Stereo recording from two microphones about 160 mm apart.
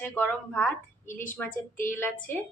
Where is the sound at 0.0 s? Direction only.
5° left (ahead or behind).